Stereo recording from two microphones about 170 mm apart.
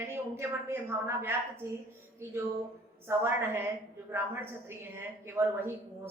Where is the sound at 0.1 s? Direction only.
15° right (ahead or behind).